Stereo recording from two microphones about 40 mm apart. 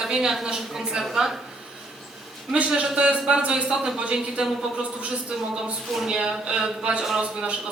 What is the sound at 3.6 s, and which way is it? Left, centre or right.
Speech, centre.